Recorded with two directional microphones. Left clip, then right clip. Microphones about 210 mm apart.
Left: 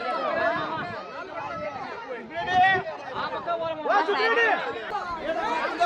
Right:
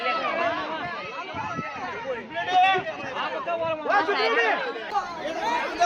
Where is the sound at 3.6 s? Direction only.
30° right (ahead or behind).